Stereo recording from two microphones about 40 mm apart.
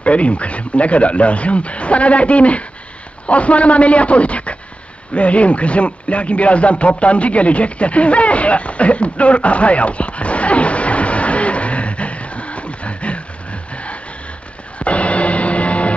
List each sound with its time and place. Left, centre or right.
0.0 s speech: left
5.1 s radio: left
14.8 s music: left